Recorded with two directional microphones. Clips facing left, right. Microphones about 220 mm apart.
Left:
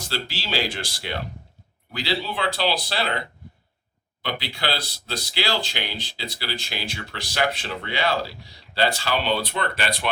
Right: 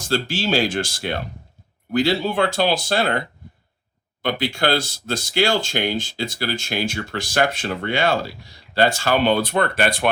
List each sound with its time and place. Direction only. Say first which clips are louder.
0.0 s speech: right 9 dB; 45° right (ahead or behind)